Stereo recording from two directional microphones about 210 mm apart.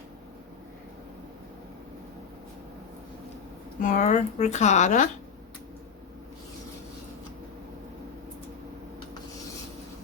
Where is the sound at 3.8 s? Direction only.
35° left (ahead or behind).